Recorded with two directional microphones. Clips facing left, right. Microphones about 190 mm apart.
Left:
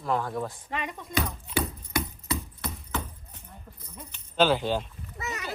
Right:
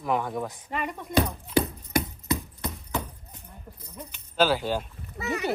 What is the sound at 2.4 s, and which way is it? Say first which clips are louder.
Horse: right 2 dB; 15° right (ahead or behind).